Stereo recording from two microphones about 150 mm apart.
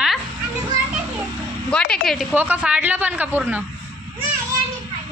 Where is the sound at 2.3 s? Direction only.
10° right (ahead or behind).